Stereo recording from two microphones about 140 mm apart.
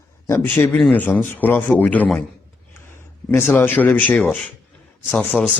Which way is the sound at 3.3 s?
15° left (ahead or behind).